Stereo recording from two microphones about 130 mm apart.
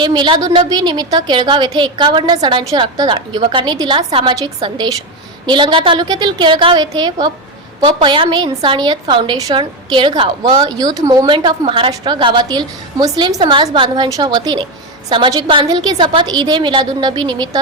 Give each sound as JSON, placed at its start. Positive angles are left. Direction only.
{"t": 0.0, "sound": "a woman's voice", "side_deg": -35}
{"t": 11.3, "sound": "a woman's voice", "side_deg": -40}